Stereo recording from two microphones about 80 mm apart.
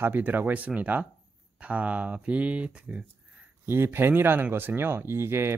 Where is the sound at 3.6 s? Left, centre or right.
Right.